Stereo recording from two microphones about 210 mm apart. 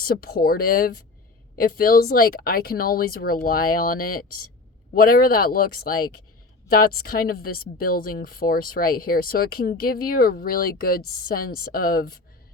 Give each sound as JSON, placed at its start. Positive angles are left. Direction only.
{"t": 0.0, "sound": "a woman's voice", "side_deg": 45}